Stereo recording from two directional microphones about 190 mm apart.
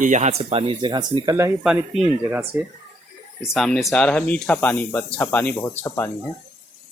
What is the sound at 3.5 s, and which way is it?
Speech, centre (ahead or behind).